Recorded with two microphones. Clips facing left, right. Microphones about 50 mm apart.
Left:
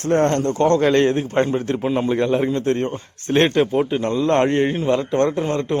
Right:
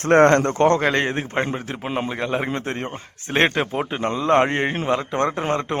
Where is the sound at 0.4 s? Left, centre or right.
Right.